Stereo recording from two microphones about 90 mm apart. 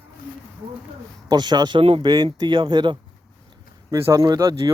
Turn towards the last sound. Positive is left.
turn(degrees=-35)  # may be behind; listen again after turning